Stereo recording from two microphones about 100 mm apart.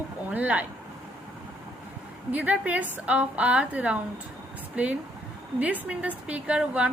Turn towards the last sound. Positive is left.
turn(degrees=-10)  # may be behind; listen again after turning